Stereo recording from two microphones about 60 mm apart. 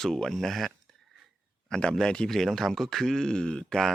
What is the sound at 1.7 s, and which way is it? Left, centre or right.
Speech, centre.